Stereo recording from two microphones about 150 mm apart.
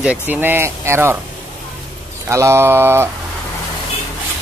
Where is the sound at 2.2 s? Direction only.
20° right (ahead or behind).